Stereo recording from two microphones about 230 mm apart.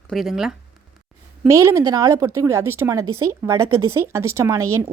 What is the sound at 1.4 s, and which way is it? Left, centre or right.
A woman's voice, centre.